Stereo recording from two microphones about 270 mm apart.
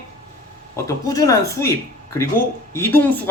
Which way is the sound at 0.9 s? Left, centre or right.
Centre.